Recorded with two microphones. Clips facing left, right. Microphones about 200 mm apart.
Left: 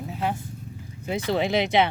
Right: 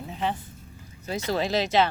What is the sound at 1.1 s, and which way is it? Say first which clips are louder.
Speech: left 3 dB; 20° left (ahead or behind).